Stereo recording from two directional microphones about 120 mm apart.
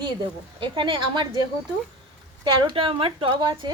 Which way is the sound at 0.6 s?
45° right (ahead or behind).